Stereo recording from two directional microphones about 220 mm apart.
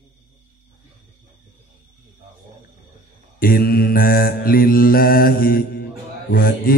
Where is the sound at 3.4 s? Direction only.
40° left (ahead or behind).